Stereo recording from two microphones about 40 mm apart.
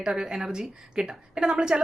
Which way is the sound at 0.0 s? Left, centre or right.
Centre.